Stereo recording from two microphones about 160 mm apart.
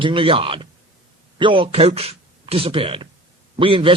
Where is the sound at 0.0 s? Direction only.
35° right (ahead or behind).